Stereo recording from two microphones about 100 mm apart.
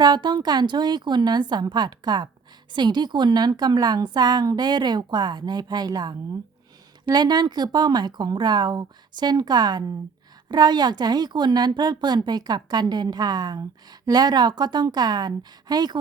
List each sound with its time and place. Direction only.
0.0 s a woman's voice: 45° right (ahead or behind)